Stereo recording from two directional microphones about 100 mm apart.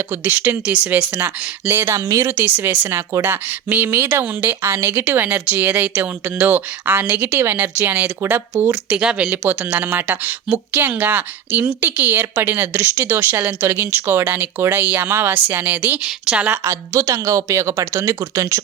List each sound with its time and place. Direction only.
0.1 s speech: 20° right (ahead or behind)
8.9 s speech: 10° right (ahead or behind)
16.6 s a woman's voice: 30° right (ahead or behind)